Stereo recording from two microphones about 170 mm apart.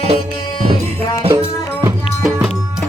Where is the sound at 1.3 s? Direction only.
20° right (ahead or behind).